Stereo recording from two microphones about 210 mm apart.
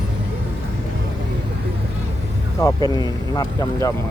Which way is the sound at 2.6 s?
15° left (ahead or behind).